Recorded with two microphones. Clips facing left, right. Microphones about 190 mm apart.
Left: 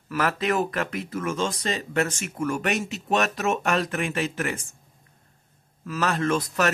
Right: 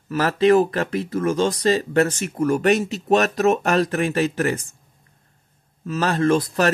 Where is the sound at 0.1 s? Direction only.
30° right (ahead or behind).